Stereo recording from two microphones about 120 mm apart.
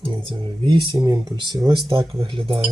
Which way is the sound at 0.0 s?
45° right (ahead or behind).